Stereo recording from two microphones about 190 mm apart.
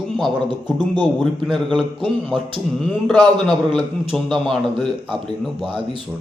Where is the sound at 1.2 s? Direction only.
Centre (ahead or behind).